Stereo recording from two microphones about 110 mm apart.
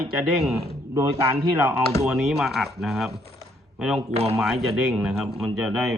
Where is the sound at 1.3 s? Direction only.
15° right (ahead or behind).